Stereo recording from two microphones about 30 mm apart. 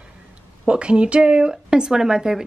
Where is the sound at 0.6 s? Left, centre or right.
Right.